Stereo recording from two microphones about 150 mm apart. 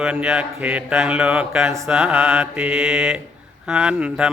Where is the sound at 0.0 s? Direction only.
5° right (ahead or behind).